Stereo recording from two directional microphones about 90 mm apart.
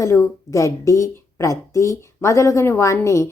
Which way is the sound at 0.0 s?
35° left (ahead or behind).